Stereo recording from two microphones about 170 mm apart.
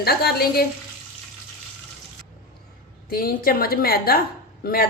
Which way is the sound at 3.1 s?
60° left (ahead or behind).